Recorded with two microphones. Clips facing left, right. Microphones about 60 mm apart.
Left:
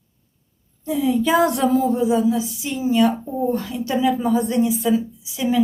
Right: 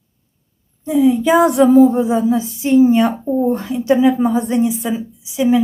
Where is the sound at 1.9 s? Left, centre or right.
Right.